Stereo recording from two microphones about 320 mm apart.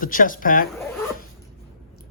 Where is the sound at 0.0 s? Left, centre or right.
Left.